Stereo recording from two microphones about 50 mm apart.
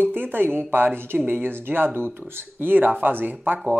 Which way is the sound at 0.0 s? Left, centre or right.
Right.